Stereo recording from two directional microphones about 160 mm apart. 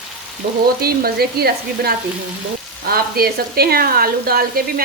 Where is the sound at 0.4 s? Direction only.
70° right (ahead or behind).